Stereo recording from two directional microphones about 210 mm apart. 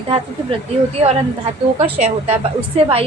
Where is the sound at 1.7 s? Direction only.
30° right (ahead or behind).